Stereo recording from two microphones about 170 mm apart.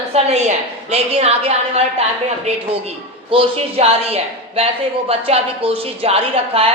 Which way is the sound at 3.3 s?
35° right (ahead or behind).